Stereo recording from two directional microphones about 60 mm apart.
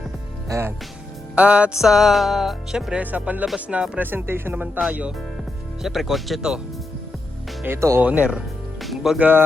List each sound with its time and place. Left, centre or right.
0.5 s speech: right
1.4 s music: centre
1.8 s music: centre
3.0 s speech: right
3.7 s music: centre
4.0 s speech: right
5.8 s music: centre
7.7 s speech: right
8.0 s speech: centre
8.8 s music: centre
9.1 s speech: right